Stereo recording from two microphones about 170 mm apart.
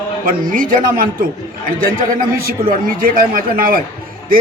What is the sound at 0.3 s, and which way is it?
A man's voice, 50° right (ahead or behind).